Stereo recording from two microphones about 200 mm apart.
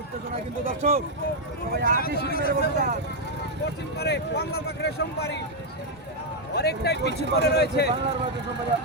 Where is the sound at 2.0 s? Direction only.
50° left (ahead or behind).